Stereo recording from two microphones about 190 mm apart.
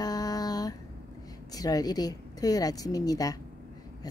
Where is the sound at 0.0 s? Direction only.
20° left (ahead or behind).